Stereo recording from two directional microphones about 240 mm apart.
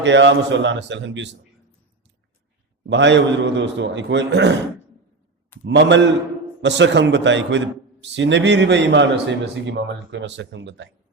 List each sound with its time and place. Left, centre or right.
0.0 s a man's voice: right
2.8 s a man's voice: right
5.6 s a man's voice: right